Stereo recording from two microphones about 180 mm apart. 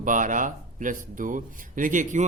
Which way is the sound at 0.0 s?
45° right (ahead or behind).